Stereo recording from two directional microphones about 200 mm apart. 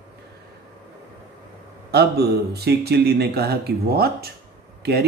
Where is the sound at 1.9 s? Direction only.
55° right (ahead or behind).